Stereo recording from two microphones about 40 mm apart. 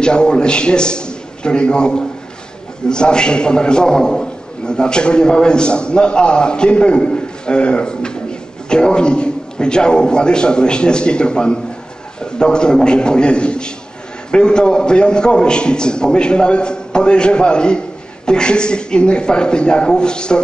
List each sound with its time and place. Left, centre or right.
0.0 s a man's voice: left